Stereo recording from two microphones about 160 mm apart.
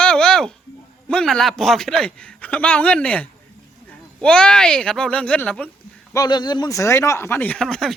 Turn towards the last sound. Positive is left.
turn(degrees=5)  # may be behind; listen again after turning